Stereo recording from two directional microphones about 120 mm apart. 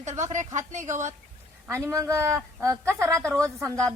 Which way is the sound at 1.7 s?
25° right (ahead or behind).